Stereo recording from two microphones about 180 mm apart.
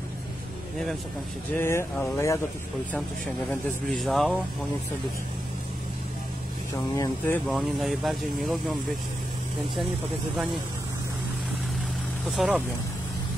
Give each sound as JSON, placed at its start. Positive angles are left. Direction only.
{"t": 1.6, "sound": "speech", "side_deg": 15}
{"t": 3.9, "sound": "speech", "side_deg": 0}
{"t": 7.0, "sound": "speech", "side_deg": 10}
{"t": 7.4, "sound": "speech", "side_deg": 0}
{"t": 12.4, "sound": "speech", "side_deg": -5}